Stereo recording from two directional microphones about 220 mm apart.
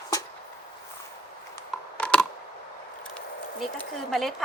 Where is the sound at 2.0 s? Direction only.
5° left (ahead or behind).